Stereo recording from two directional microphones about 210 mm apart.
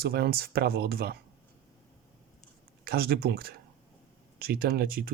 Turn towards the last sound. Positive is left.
turn(degrees=-45)  # may be behind; listen again after turning